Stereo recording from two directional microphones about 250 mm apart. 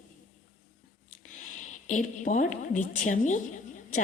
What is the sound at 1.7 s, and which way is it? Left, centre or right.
A woman's voice, left.